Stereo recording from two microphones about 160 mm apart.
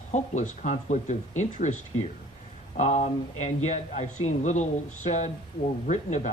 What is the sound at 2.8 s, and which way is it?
Speech, 45° left (ahead or behind).